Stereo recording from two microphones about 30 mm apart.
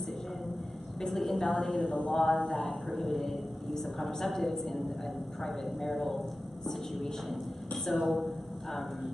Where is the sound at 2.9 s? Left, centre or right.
Centre.